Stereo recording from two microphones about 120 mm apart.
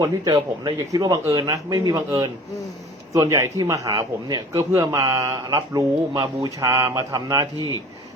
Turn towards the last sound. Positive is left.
turn(degrees=35)  # may be behind; listen again after turning